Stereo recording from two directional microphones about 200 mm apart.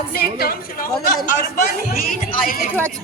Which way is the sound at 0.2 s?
50° left (ahead or behind).